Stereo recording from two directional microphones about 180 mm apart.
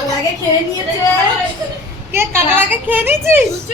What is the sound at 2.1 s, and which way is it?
A woman's voice, 15° right (ahead or behind).